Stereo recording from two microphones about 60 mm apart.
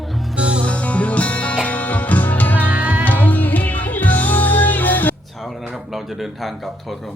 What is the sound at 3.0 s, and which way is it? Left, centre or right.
Music, left.